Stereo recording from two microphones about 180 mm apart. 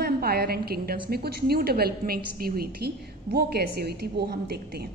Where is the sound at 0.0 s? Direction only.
60° right (ahead or behind).